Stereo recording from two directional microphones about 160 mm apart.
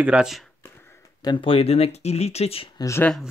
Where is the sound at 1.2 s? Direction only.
30° left (ahead or behind).